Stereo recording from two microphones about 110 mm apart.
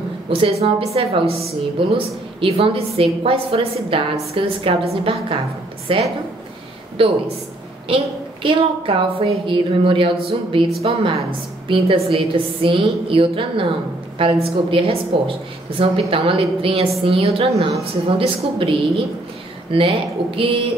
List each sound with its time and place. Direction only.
0.3 s a woman's voice: 60° right (ahead or behind)
10.8 s a woman's voice: 65° right (ahead or behind)